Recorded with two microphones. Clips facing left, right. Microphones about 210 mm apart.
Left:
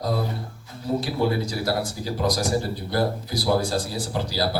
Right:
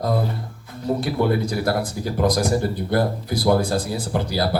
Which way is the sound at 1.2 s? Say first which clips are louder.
Right 5 dB; 55° right (ahead or behind).